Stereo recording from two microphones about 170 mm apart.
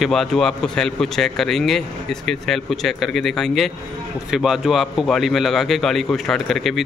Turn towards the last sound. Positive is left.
turn(degrees=0)  # may be behind; listen again after turning